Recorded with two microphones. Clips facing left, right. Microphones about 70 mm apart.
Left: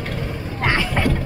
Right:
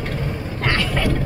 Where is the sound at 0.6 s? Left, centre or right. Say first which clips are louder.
Left 1 dB; centre.